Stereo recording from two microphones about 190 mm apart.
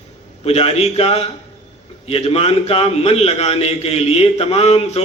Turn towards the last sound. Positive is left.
turn(degrees=30)  # may be behind; listen again after turning